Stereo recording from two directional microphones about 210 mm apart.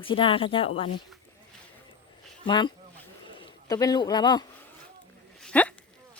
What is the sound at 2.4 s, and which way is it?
Speech, 20° left (ahead or behind).